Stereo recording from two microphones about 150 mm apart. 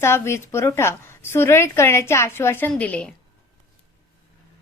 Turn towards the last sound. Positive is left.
turn(degrees=10)  # may be behind; listen again after turning